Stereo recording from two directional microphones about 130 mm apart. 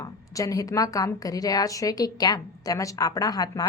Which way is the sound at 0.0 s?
25° left (ahead or behind).